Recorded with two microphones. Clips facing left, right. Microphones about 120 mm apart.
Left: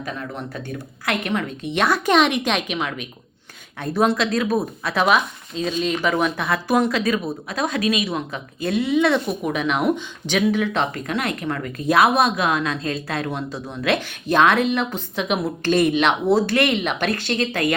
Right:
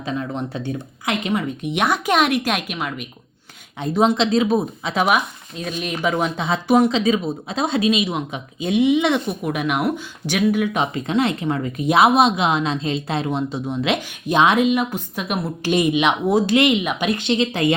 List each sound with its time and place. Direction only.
0.0 s a woman's voice: 25° right (ahead or behind); by 3.1 s 5° right (ahead or behind)
3.9 s a woman's voice: 20° right (ahead or behind)
6.0 s a woman's voice: 20° right (ahead or behind)
11.0 s a woman's voice: 25° right (ahead or behind)